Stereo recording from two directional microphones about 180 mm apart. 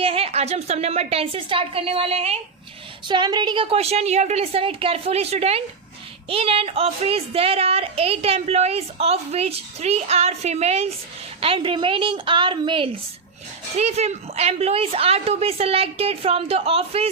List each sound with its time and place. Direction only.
0.0 s a woman's voice: 30° right (ahead or behind)
3.1 s a woman's voice: 25° right (ahead or behind)